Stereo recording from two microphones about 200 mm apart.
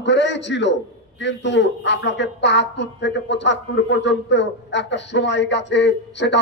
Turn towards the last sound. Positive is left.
turn(degrees=60)  # may be behind; listen again after turning